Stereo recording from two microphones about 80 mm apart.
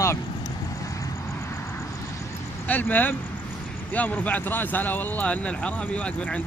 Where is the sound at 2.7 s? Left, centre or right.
Left.